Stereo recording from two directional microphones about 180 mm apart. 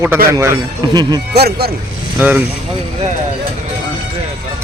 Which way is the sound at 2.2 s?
10° right (ahead or behind).